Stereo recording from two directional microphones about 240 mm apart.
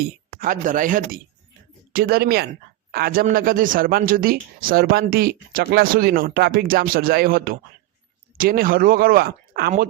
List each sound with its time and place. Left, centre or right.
0.0 s speech: right